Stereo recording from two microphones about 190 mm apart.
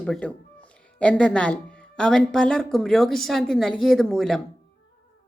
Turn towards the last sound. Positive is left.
turn(degrees=0)  # may be behind; listen again after turning